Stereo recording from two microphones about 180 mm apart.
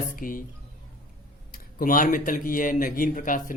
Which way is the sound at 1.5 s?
50° left (ahead or behind).